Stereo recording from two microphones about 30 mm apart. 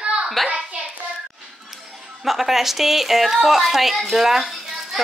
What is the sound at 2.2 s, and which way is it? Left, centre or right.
A woman's voice, centre.